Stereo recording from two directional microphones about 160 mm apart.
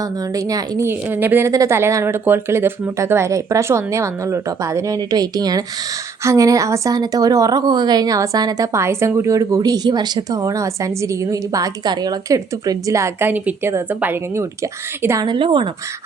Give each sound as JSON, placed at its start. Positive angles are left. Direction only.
{"t": 0.0, "sound": "a woman's voice", "side_deg": -20}
{"t": 15.3, "sound": "speech", "side_deg": -30}